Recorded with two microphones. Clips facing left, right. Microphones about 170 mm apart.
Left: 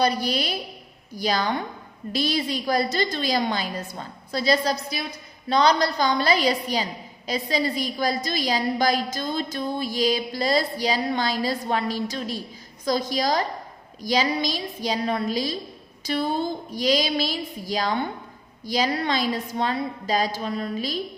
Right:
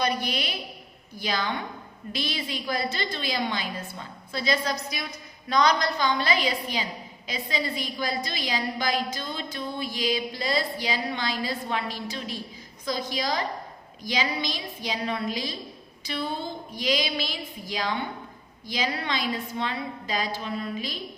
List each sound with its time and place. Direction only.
0.0 s a woman's voice: 35° left (ahead or behind)